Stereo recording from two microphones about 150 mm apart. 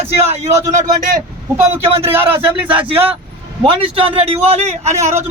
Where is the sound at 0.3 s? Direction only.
45° right (ahead or behind).